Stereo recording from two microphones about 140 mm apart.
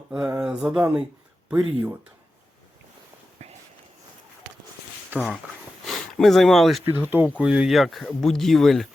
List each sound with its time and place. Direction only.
0.1 s mantra: 5° right (ahead or behind)
5.1 s speech: centre (ahead or behind)
6.8 s speech: 15° right (ahead or behind); by 8.9 s centre (ahead or behind)